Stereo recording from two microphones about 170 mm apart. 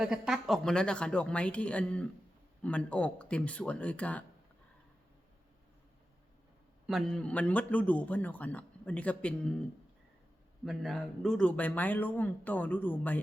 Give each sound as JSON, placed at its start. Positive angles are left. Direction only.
{"t": 0.0, "sound": "a man's voice", "side_deg": -5}
{"t": 6.8, "sound": "a man's voice", "side_deg": 0}
{"t": 10.7, "sound": "a man's voice", "side_deg": 0}